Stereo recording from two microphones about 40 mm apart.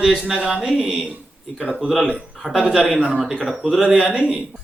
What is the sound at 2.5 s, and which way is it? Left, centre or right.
Speech, right.